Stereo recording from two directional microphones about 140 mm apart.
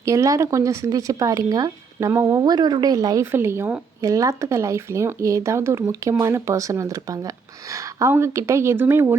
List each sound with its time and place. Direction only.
0.0 s speech: 20° right (ahead or behind)